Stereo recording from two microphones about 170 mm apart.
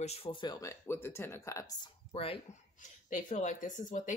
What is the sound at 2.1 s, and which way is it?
Speech, 35° left (ahead or behind).